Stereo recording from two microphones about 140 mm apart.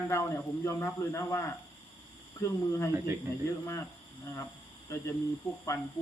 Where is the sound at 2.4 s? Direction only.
20° left (ahead or behind).